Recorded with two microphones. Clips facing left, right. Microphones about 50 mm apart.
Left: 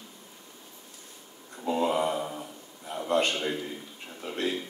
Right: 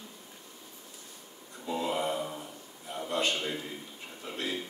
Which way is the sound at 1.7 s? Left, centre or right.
Left.